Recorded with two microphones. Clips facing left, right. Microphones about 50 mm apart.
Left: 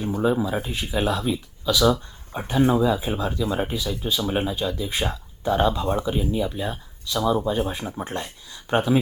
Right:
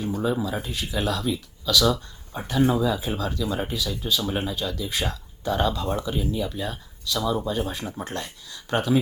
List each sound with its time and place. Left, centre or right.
0.0 s speech: centre